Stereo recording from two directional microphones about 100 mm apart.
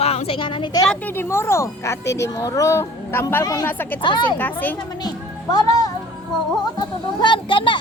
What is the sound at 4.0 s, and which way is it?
Speech, 50° left (ahead or behind).